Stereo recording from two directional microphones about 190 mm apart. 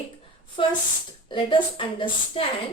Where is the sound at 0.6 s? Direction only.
30° left (ahead or behind).